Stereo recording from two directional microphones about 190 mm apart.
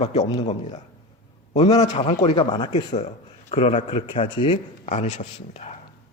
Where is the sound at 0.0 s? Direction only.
35° left (ahead or behind).